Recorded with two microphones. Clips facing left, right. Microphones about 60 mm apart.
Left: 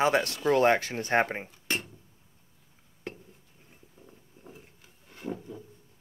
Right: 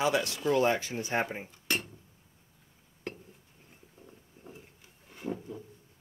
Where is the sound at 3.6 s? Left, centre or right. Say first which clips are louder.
Even; centre.